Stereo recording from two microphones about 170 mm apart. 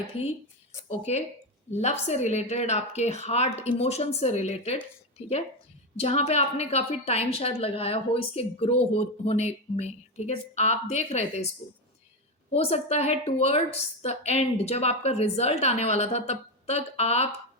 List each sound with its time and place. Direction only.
0.1 s a woman's voice: 35° left (ahead or behind)
12.5 s a woman's voice: 35° left (ahead or behind)